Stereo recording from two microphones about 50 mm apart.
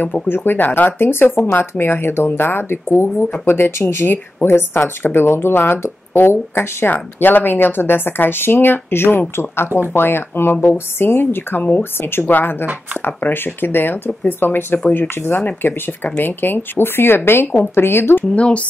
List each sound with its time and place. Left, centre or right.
0.0 s speech: left
6.9 s speech: left
18.3 s speech: left